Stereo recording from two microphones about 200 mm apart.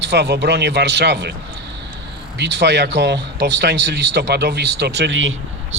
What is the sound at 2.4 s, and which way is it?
Speech, 60° right (ahead or behind).